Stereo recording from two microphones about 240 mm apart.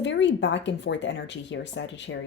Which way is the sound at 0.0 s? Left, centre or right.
Left.